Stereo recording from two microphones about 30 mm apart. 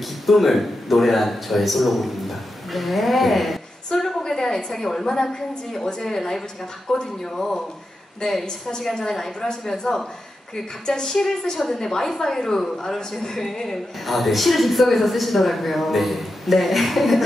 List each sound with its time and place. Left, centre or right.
0.0 s a man's voice: centre
4.2 s a woman's voice: centre
6.9 s a woman's voice: left; by 17.2 s centre